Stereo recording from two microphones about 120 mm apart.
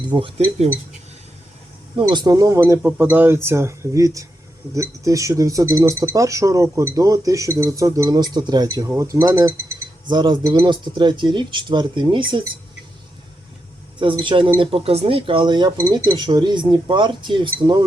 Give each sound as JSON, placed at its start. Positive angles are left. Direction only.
{"t": 0.1, "sound": "speech", "side_deg": -45}
{"t": 2.0, "sound": "speech", "side_deg": -40}
{"t": 10.1, "sound": "speech", "side_deg": -35}
{"t": 14.0, "sound": "speech", "side_deg": -45}